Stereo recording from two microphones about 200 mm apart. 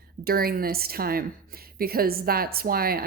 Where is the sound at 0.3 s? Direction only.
50° right (ahead or behind).